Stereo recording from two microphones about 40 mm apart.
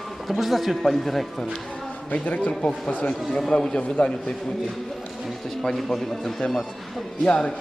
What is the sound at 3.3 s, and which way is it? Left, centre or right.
A man's voice, centre.